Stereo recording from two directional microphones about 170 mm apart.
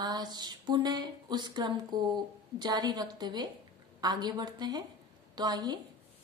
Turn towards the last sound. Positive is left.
turn(degrees=-25)  # may be behind; listen again after turning